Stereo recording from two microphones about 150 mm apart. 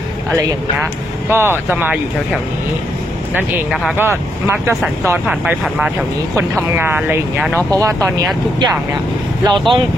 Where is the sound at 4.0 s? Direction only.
15° right (ahead or behind).